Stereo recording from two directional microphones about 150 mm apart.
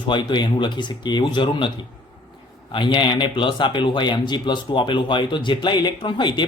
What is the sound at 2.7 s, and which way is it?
Speech, 30° left (ahead or behind).